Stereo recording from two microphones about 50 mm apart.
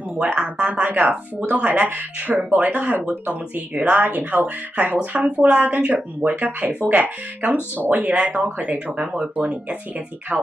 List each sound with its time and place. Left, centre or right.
0.2 s speech: right